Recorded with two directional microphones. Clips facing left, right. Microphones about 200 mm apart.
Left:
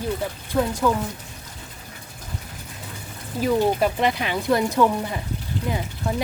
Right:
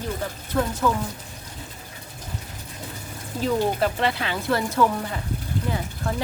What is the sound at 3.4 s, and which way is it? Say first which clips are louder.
Speech: left 3 dB; 10° left (ahead or behind).